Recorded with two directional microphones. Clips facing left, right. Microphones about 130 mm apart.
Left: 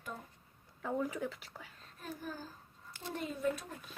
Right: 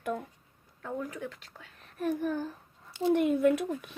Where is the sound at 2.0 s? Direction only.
65° right (ahead or behind).